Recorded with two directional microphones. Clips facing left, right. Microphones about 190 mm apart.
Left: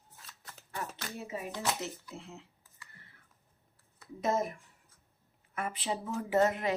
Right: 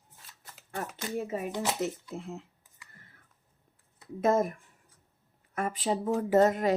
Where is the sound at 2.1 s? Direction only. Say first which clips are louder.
Right 8 dB; 50° right (ahead or behind).